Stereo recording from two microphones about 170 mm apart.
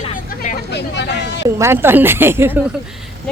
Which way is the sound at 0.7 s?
85° left.